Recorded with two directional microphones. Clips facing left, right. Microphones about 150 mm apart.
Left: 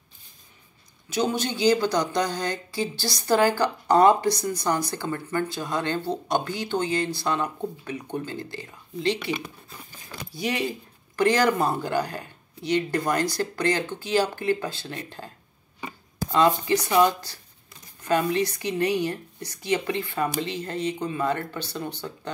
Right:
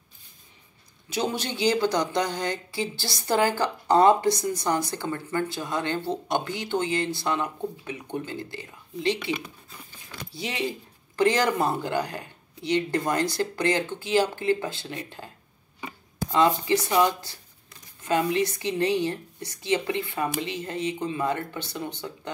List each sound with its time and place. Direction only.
1.4 s a woman's voice: 25° right (ahead or behind)
10.3 s a woman's voice: 25° right (ahead or behind)
16.3 s a woman's voice: 20° right (ahead or behind)
18.0 s a woman's voice: 20° right (ahead or behind)